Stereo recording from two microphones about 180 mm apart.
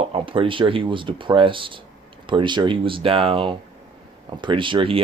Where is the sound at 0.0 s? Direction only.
30° right (ahead or behind).